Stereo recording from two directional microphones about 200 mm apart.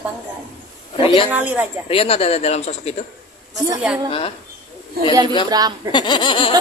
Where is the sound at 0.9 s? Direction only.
25° left (ahead or behind).